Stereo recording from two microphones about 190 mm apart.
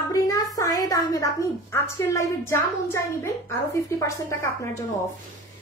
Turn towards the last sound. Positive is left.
turn(degrees=15)  # may be behind; listen again after turning